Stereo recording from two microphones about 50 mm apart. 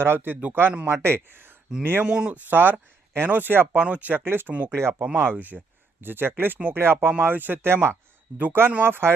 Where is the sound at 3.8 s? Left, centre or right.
Right.